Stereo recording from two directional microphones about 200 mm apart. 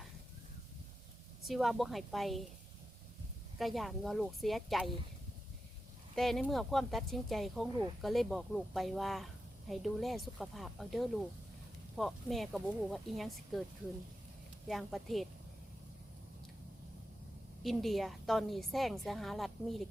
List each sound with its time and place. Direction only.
1.4 s speech: centre (ahead or behind)
3.6 s speech: centre (ahead or behind)
6.1 s speech: centre (ahead or behind)
14.7 s speech: centre (ahead or behind)
17.6 s speech: centre (ahead or behind)